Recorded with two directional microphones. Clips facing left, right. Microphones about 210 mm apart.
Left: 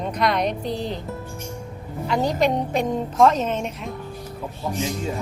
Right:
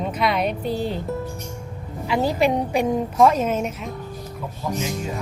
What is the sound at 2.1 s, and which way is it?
A woman's voice, 5° right (ahead or behind).